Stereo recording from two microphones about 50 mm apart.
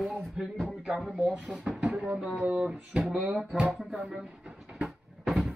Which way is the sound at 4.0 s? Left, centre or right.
Centre.